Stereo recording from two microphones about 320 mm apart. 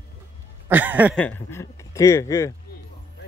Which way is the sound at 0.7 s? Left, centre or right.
Centre.